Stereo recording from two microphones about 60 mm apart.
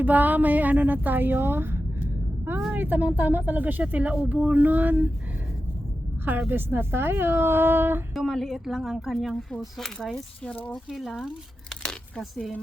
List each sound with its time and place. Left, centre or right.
0.0 s speech: right
6.5 s speech: right
8.1 s a woman's voice: centre
9.1 s a woman's voice: centre
10.4 s speech: left
10.8 s speech: centre
11.8 s a sound: centre